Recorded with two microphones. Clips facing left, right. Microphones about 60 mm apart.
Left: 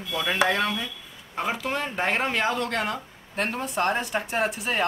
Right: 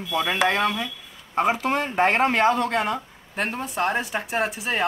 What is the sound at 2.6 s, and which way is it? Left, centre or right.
Speech, centre.